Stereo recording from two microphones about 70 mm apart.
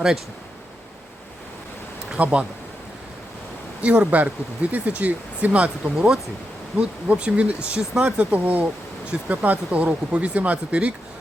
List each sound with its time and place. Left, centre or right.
2.1 s speech: centre
3.8 s speech: centre
8.3 s speech: right